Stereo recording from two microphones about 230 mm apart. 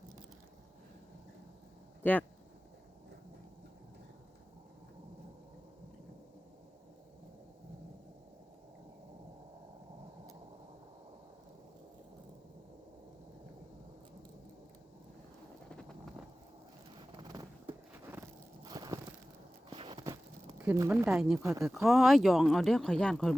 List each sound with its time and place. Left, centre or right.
2.0 s speech: centre
18.1 s biting: centre
19.7 s a sound: right
20.6 s speech: centre
21.8 s speech: centre